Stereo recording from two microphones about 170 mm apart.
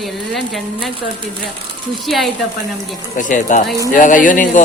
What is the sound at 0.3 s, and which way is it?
Speech, centre (ahead or behind).